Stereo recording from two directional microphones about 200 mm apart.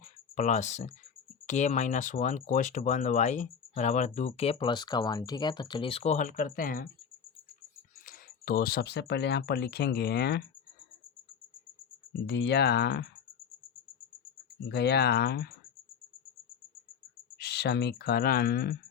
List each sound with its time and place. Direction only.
0.0 s a sound: 35° left (ahead or behind)
1.5 s speech: 35° left (ahead or behind)
8.0 s speech: 45° left (ahead or behind)
12.2 s speech: 55° left (ahead or behind)
14.7 s speech: 55° left (ahead or behind)
17.3 s speech: 55° left (ahead or behind)